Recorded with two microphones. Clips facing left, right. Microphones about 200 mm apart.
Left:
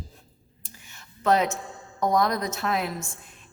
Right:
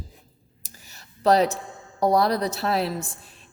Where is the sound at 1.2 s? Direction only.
35° right (ahead or behind).